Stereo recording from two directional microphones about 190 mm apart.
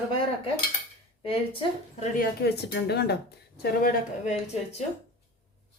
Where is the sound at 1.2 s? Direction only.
30° left (ahead or behind).